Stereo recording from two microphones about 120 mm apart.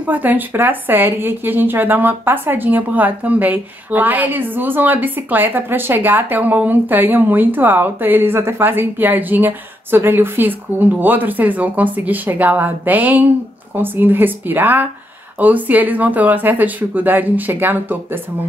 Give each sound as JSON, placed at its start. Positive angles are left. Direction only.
{"t": 0.0, "sound": "speech", "side_deg": -15}